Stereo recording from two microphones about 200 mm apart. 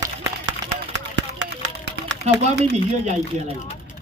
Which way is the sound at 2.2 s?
30° right (ahead or behind).